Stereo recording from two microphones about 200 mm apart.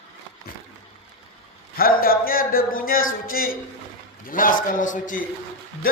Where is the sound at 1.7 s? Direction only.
45° left (ahead or behind).